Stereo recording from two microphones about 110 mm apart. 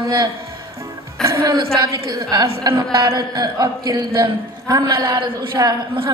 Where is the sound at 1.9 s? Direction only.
30° right (ahead or behind).